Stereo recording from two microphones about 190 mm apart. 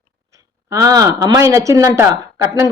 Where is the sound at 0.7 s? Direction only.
15° right (ahead or behind).